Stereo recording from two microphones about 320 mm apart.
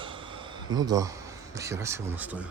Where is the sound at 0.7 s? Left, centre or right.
Centre.